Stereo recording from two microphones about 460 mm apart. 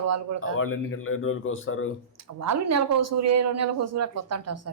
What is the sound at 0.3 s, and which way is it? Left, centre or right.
Speech, left.